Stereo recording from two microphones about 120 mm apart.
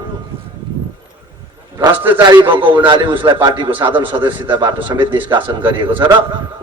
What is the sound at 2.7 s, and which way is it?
A man's voice, 40° right (ahead or behind).